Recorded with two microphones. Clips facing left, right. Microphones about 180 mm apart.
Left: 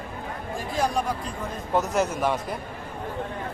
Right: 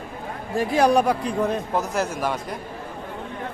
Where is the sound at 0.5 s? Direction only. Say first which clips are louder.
Right 8 dB; 70° right (ahead or behind).